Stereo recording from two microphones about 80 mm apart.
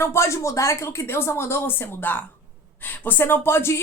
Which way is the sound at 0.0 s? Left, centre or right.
Left.